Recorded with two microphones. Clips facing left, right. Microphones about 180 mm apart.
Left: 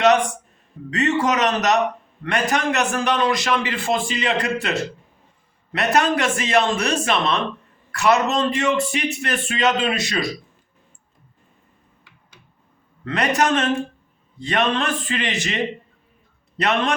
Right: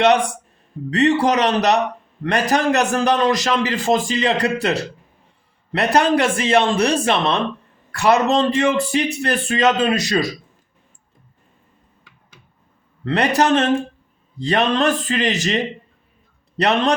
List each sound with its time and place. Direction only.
0.9 s a man's voice: 35° right (ahead or behind)
13.1 s a man's voice: 35° right (ahead or behind)
16.6 s a man's voice: 35° right (ahead or behind)